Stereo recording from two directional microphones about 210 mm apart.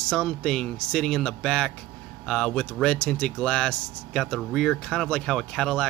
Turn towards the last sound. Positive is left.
turn(degrees=5)  # may be behind; listen again after turning